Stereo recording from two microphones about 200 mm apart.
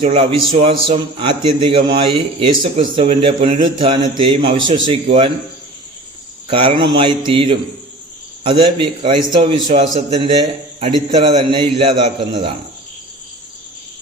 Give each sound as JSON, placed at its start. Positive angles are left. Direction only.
{"t": 0.0, "sound": "a man's voice", "side_deg": -30}
{"t": 6.5, "sound": "a man's voice", "side_deg": -25}